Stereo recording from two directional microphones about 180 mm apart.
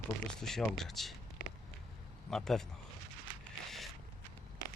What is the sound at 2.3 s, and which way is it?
Speech, 5° left (ahead or behind).